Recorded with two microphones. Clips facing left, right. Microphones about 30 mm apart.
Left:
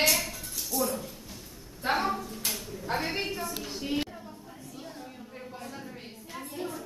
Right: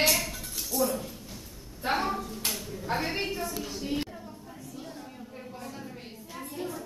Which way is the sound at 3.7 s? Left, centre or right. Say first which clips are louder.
Even; centre.